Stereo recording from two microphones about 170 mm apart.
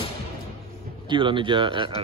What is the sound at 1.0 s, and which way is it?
Speech, 30° right (ahead or behind).